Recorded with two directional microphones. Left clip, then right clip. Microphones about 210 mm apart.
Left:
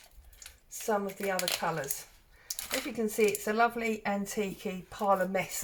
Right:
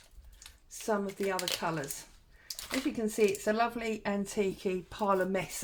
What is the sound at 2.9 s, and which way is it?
Speech, 45° right (ahead or behind).